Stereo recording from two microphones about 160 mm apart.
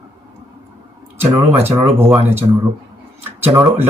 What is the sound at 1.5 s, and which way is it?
Speech, 15° right (ahead or behind).